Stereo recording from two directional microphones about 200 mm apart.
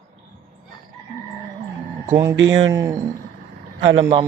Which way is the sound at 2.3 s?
70° right (ahead or behind).